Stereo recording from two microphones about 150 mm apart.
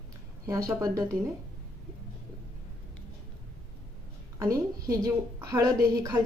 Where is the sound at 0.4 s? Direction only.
25° right (ahead or behind).